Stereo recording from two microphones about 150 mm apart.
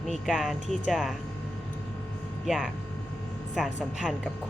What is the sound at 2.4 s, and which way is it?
Speech, centre (ahead or behind).